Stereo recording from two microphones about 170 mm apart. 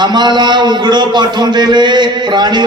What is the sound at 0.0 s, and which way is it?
A man's voice, 25° right (ahead or behind).